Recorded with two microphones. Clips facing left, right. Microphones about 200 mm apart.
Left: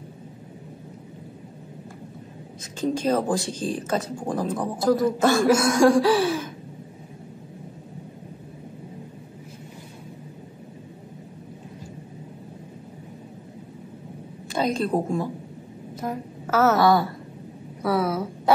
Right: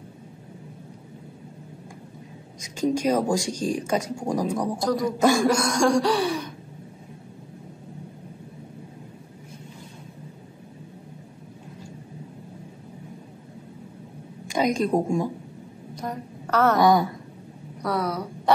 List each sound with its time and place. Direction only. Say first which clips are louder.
2.6 s speech: right 1 dB; 15° right (ahead or behind)
4.7 s chuckle: left 4 dB; 5° left (ahead or behind)
5.0 s speech: even; 15° right (ahead or behind)
5.5 s chuckle: left 4 dB; 5° left (ahead or behind)
14.5 s a woman's voice: right 1 dB; 15° right (ahead or behind)
15.9 s a sound: left 2 dB; 5° left (ahead or behind)
16.7 s speech: even; 15° right (ahead or behind)
17.8 s chuckle: left 3 dB; 5° left (ahead or behind)